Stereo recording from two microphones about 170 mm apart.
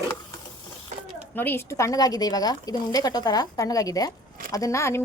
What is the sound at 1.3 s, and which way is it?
A woman's voice, 10° left (ahead or behind).